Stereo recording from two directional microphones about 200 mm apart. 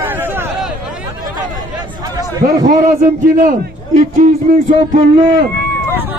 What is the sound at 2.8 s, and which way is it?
A man's voice, 40° right (ahead or behind).